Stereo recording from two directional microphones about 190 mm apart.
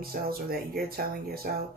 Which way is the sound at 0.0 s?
50° right (ahead or behind).